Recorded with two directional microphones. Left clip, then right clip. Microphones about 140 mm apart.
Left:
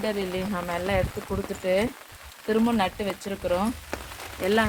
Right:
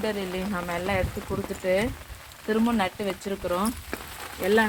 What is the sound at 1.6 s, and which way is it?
Speech, 10° left (ahead or behind).